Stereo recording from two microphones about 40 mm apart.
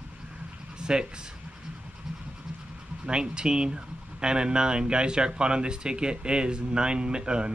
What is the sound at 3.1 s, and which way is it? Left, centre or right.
Speech, right.